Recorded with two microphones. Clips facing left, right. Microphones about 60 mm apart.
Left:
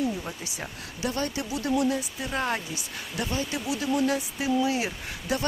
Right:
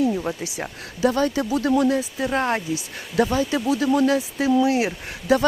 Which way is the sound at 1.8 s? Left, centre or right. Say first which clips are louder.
Right 6 dB; right.